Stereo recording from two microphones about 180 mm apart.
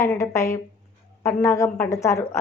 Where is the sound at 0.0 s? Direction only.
15° left (ahead or behind).